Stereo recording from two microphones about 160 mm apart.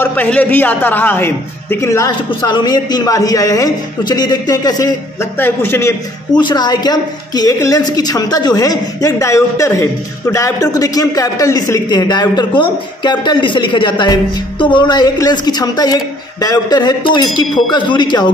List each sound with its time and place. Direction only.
0.0 s a woman's voice: 10° left (ahead or behind)
6.3 s a woman's voice: 25° left (ahead or behind)